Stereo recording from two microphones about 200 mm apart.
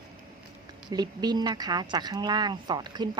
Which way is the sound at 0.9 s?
20° right (ahead or behind).